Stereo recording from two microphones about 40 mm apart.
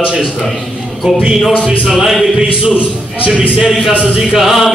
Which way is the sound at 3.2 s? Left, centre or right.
Right.